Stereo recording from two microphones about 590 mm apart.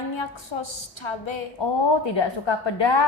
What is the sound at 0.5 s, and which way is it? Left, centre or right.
A woman's voice, left.